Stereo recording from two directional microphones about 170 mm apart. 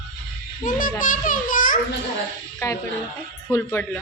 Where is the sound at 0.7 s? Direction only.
50° left (ahead or behind).